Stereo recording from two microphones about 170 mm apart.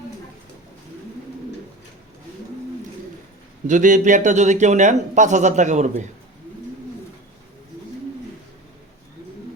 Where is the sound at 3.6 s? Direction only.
50° right (ahead or behind).